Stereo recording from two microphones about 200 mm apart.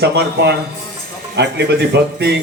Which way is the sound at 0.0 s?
60° right (ahead or behind).